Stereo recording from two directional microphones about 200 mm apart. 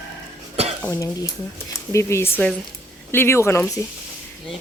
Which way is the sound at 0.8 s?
15° left (ahead or behind).